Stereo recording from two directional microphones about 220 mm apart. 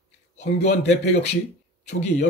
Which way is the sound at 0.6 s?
30° left (ahead or behind).